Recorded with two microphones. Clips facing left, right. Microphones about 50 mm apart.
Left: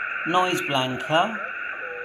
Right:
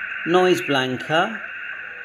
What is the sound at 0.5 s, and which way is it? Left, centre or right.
Speech, right.